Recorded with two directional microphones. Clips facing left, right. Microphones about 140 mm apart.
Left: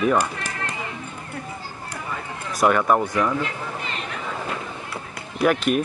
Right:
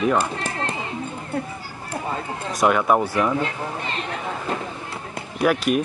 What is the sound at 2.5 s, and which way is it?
Speech, 5° right (ahead or behind).